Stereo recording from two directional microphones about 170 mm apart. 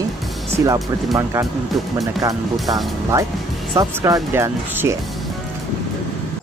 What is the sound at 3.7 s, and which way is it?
Speech, 20° right (ahead or behind).